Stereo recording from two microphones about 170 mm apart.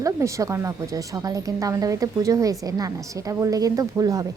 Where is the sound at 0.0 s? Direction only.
20° right (ahead or behind).